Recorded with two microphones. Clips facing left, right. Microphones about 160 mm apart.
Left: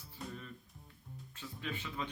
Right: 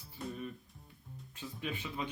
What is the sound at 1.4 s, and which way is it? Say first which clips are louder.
Speech: right 2 dB; 15° right (ahead or behind).